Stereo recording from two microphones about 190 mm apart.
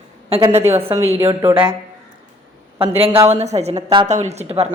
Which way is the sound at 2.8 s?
30° right (ahead or behind).